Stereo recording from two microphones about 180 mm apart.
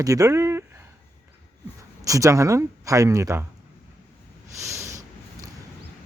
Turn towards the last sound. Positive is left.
turn(degrees=-15)  # may be behind; listen again after turning